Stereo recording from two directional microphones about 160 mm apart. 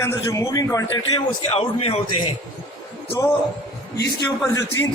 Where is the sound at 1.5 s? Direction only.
40° left (ahead or behind).